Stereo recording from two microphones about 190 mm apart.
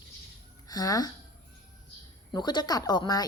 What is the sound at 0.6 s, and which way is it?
Speech, 20° left (ahead or behind).